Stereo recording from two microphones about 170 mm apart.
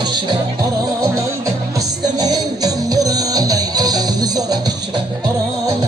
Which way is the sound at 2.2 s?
25° right (ahead or behind).